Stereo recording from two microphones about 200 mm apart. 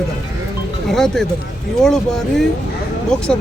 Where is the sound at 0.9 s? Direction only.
Centre (ahead or behind).